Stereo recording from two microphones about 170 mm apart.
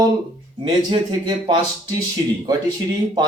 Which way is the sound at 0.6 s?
30° right (ahead or behind).